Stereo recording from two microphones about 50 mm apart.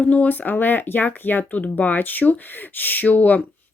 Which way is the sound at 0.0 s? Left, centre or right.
Left.